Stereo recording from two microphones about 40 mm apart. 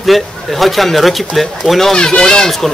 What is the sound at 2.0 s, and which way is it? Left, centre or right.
Speech, left.